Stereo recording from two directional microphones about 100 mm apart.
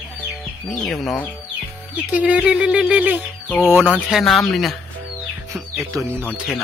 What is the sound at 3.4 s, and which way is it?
Chicken, 5° left (ahead or behind).